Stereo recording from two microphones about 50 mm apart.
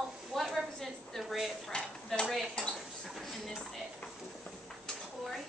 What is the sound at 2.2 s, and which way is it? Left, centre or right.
A woman's voice, centre.